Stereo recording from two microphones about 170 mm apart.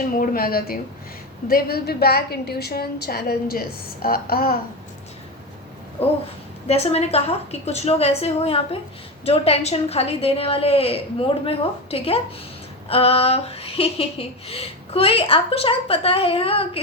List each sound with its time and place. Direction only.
0.2 s a woman's voice: 60° left (ahead or behind)
6.0 s speech: 35° left (ahead or behind)